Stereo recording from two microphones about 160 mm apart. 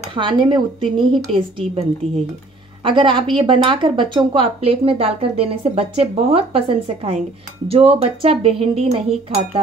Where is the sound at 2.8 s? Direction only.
30° right (ahead or behind).